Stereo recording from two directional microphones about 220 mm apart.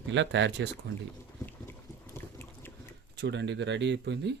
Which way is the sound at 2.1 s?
10° left (ahead or behind).